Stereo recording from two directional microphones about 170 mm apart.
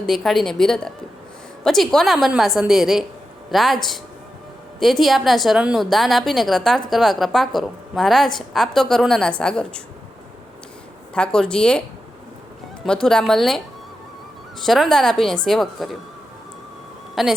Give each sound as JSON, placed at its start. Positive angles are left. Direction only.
{"t": 0.0, "sound": "a woman's voice", "side_deg": 0}
{"t": 11.1, "sound": "a woman's voice", "side_deg": 5}
{"t": 12.8, "sound": "a woman's voice", "side_deg": 5}
{"t": 14.6, "sound": "a woman's voice", "side_deg": 0}
{"t": 17.2, "sound": "a woman's voice", "side_deg": 0}